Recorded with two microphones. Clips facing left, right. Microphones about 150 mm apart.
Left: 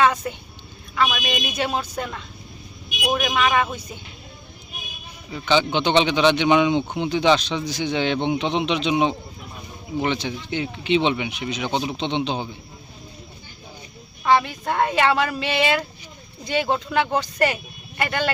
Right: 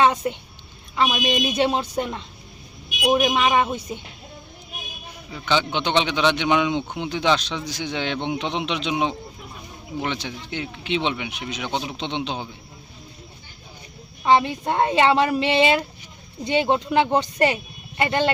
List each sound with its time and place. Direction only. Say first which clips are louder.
0.0 s a woman's voice: right 1 dB; 25° right (ahead or behind)
5.3 s speech: left 3 dB; centre (ahead or behind)
14.3 s speech: right 1 dB; 20° right (ahead or behind)